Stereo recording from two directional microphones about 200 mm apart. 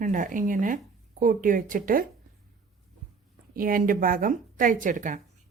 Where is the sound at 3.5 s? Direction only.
45° right (ahead or behind).